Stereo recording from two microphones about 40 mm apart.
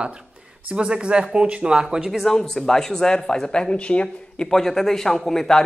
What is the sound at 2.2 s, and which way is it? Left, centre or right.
Speech, centre.